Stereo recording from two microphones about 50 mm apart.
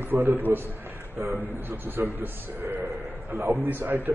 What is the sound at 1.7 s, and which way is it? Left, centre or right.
A man's voice, right.